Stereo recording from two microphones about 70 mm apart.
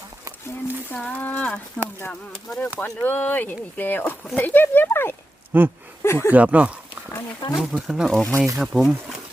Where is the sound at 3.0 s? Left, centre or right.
Left.